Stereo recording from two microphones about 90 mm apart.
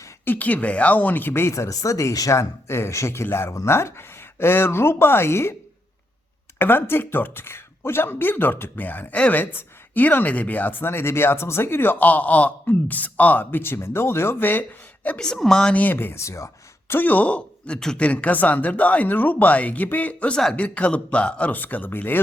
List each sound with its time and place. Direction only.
0.3 s speech: 20° left (ahead or behind)
6.6 s speech: 25° left (ahead or behind)
15.0 s speech: 10° left (ahead or behind); by 16.5 s 35° left (ahead or behind)
16.9 s speech: 20° left (ahead or behind)